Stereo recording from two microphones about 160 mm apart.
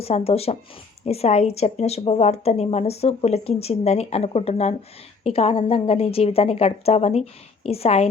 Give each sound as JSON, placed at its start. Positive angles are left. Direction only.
{"t": 0.0, "sound": "a woman's voice", "side_deg": 40}